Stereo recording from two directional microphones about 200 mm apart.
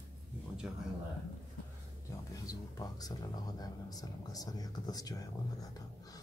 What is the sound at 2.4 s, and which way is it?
Speech, 20° left (ahead or behind).